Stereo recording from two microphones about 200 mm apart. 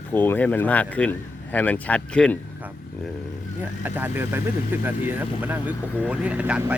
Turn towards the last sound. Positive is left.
turn(degrees=-5)  # may be behind; listen again after turning